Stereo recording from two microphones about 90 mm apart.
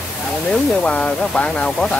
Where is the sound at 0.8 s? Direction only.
10° left (ahead or behind).